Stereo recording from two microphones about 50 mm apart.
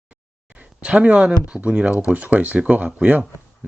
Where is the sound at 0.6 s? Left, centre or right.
Right.